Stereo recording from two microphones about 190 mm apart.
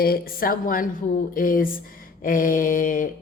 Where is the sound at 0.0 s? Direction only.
50° left (ahead or behind).